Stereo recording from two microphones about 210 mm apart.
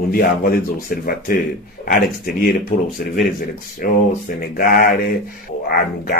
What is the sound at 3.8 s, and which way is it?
A man's voice, 40° left (ahead or behind).